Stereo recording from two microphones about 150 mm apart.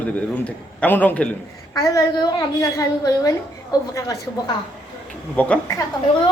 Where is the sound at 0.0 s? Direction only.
10° left (ahead or behind).